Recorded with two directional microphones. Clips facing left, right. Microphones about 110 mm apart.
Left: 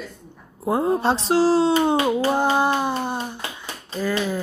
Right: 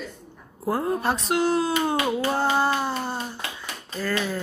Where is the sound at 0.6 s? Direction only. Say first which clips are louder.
Left 4 dB; 25° left (ahead or behind).